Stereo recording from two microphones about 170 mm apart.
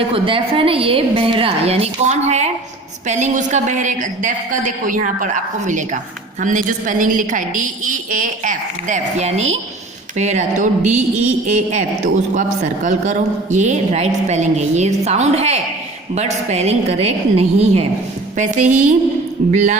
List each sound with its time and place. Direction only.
0.1 s a woman's voice: 30° right (ahead or behind); by 18.9 s 45° right (ahead or behind)